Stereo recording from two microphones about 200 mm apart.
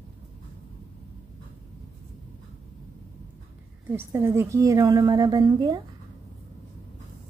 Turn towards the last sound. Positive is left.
turn(degrees=-20)  # may be behind; listen again after turning